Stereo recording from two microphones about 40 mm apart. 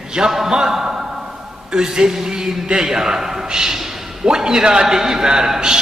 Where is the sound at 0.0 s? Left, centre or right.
Centre.